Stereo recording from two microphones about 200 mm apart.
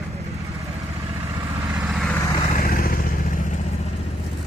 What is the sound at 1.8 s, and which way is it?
Vehicle, 5° right (ahead or behind).